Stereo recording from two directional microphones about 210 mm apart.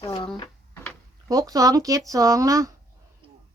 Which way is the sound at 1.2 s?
15° right (ahead or behind).